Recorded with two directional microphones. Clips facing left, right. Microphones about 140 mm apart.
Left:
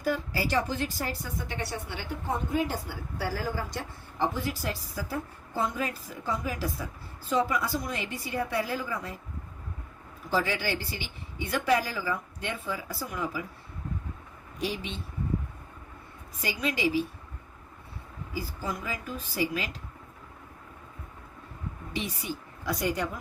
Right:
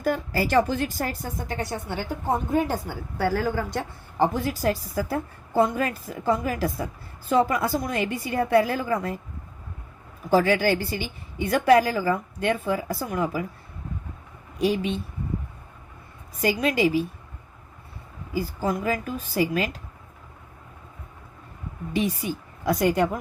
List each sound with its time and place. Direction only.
0.0 s a woman's voice: 50° right (ahead or behind)
10.2 s a woman's voice: 50° right (ahead or behind)
14.6 s a woman's voice: 45° right (ahead or behind)
16.4 s a woman's voice: 50° right (ahead or behind)
18.6 s a woman's voice: 50° right (ahead or behind)
21.9 s a woman's voice: 50° right (ahead or behind)